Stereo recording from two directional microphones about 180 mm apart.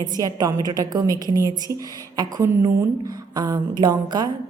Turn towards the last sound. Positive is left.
turn(degrees=-25)  # may be behind; listen again after turning